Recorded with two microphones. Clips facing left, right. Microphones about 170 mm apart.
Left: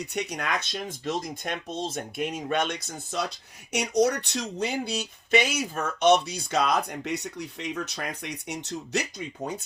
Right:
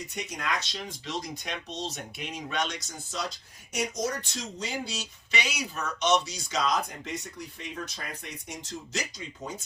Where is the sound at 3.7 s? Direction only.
70° left (ahead or behind).